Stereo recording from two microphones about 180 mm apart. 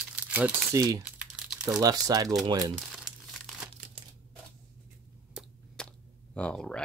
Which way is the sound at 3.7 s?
35° right (ahead or behind).